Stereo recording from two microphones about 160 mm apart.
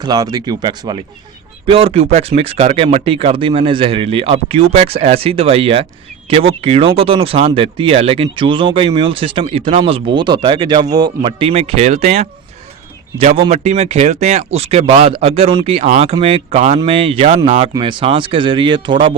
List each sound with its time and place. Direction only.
0.0 s speech: 25° right (ahead or behind)